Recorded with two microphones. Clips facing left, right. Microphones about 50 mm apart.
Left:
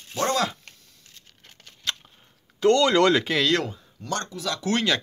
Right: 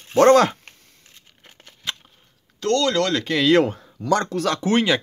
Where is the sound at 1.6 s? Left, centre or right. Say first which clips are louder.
Even; centre.